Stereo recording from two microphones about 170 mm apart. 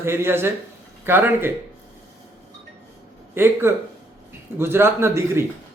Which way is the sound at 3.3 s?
15° right (ahead or behind).